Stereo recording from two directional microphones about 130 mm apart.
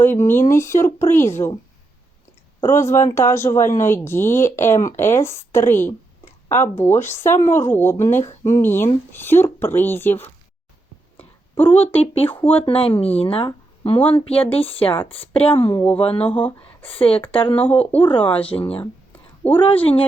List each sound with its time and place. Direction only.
0.0 s speech: 20° left (ahead or behind)
2.6 s speech: 20° left (ahead or behind)
11.2 s a sound: 15° left (ahead or behind)
11.9 s speech: 50° left (ahead or behind)
12.3 s speech: 15° left (ahead or behind)
12.6 s speech: 45° left (ahead or behind)
16.3 s speech: 15° left (ahead or behind)
17.0 s speech: 45° left (ahead or behind)
19.4 s speech: 10° left (ahead or behind)